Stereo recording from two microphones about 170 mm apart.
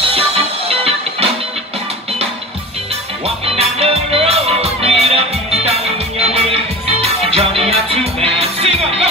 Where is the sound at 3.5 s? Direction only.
35° right (ahead or behind).